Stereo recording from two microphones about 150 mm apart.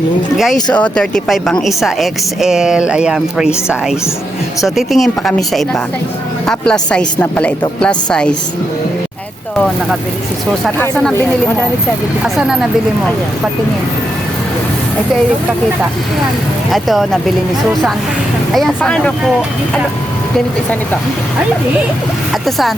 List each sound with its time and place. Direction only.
0.7 s a woman's voice: 5° left (ahead or behind)
11.1 s a woman's voice: 15° left (ahead or behind)
16.7 s a woman's voice: centre (ahead or behind)
18.5 s a woman's voice: 5° left (ahead or behind)
22.3 s speech: centre (ahead or behind)